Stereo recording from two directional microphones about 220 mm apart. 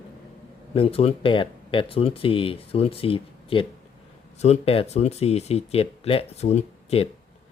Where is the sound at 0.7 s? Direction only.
25° left (ahead or behind).